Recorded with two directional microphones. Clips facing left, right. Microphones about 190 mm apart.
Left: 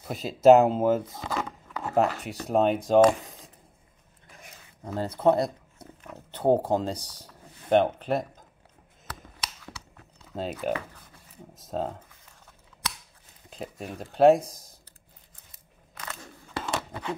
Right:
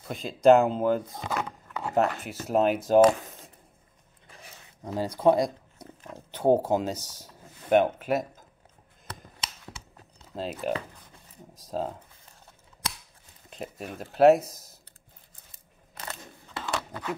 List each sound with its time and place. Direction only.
0.1 s speech: 5° left (ahead or behind)
0.6 s speech: 40° left (ahead or behind)
1.3 s a sound: centre (ahead or behind)
2.0 s speech: centre (ahead or behind)
4.8 s speech: 10° right (ahead or behind)
10.3 s speech: centre (ahead or behind)
13.5 s speech: centre (ahead or behind)
15.5 s crunch: 30° right (ahead or behind)
16.7 s a sound: 20° left (ahead or behind)